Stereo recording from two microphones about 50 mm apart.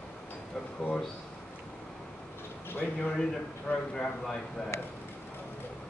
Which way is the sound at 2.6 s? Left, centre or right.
Left.